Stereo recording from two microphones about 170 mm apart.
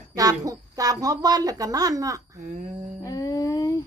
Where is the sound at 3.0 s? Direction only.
20° left (ahead or behind).